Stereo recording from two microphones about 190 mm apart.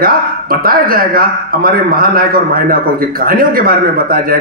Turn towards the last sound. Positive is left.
turn(degrees=-50)  # may be behind; listen again after turning